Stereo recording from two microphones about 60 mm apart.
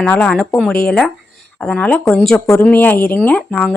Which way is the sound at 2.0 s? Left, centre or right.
Centre.